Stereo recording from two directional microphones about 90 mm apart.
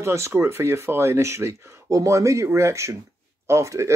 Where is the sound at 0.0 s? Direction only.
30° right (ahead or behind).